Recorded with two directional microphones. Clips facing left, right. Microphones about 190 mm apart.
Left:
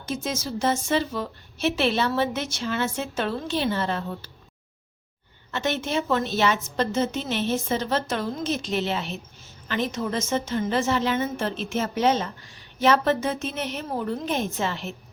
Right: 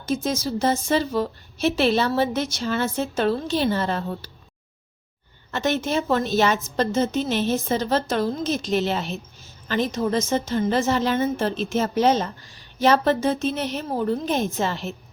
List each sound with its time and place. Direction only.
0.1 s a woman's voice: 35° right (ahead or behind)
5.5 s a woman's voice: 40° right (ahead or behind)